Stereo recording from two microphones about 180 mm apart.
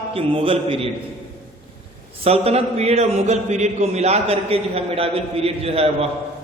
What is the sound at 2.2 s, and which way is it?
A man's voice, 35° right (ahead or behind).